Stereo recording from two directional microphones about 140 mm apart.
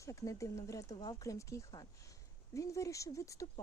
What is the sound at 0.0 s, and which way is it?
Speech, 20° left (ahead or behind).